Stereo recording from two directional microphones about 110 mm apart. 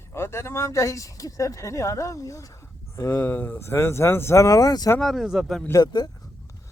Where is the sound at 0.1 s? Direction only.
25° left (ahead or behind).